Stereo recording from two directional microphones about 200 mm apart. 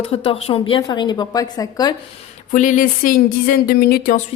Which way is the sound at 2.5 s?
40° left (ahead or behind).